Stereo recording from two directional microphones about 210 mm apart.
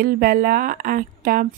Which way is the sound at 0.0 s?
45° right (ahead or behind).